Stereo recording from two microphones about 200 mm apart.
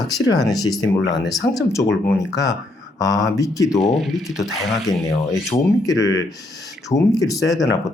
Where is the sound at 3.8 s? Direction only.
Centre (ahead or behind).